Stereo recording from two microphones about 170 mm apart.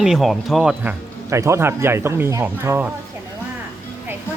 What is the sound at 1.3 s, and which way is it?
Speech, 15° right (ahead or behind).